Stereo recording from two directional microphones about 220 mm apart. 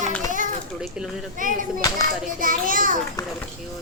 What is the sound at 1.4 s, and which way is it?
A child's voice, 40° right (ahead or behind).